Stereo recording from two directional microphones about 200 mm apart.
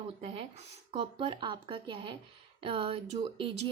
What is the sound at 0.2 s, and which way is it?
Speech, 30° right (ahead or behind).